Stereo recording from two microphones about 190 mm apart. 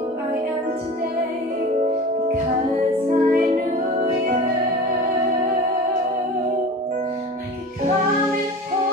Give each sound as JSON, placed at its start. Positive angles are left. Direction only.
{"t": 3.1, "sound": "music", "side_deg": -40}